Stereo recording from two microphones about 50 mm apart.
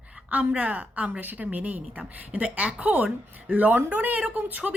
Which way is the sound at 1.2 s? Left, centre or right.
Right.